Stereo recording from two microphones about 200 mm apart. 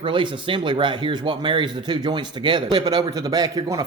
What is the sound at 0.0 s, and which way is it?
A man's voice, 25° right (ahead or behind).